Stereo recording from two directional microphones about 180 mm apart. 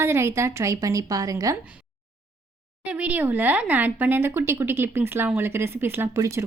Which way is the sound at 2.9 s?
10° right (ahead or behind).